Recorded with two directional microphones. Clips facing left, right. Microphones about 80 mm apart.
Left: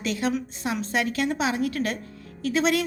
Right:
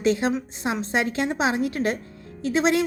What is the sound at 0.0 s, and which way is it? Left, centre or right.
A woman's voice, right.